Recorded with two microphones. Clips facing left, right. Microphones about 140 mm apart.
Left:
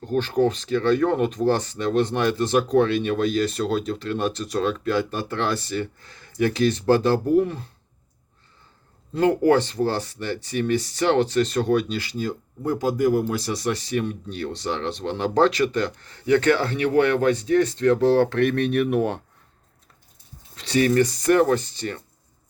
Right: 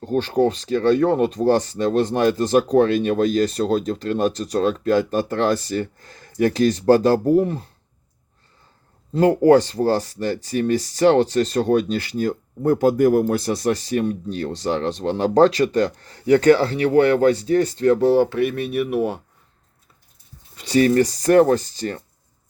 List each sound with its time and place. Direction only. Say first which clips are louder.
0.0 s speech: right 2 dB; 35° right (ahead or behind)
9.1 s speech: right 4 dB; 35° right (ahead or behind)
18.0 s speech: right 1 dB; 10° right (ahead or behind)
20.7 s speech: right 3 dB; 35° right (ahead or behind)